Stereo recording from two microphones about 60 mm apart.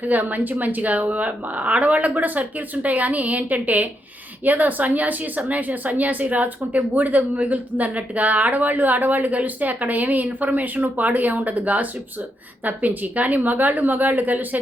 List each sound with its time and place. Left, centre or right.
0.0 s speech: right